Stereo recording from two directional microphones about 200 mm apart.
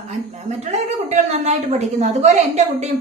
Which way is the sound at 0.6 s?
35° right (ahead or behind).